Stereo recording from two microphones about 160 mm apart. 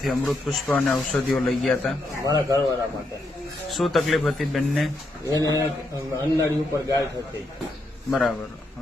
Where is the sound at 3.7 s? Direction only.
Centre (ahead or behind).